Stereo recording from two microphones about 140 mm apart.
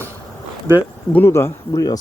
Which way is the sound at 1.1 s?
15° left (ahead or behind).